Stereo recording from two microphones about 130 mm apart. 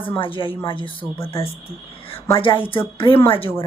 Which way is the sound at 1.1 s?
20° left (ahead or behind).